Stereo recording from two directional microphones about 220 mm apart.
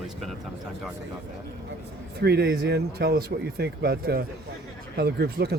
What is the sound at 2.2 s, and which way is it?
Speech, 45° right (ahead or behind).